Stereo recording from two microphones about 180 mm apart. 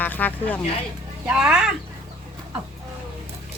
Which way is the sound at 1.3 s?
5° right (ahead or behind).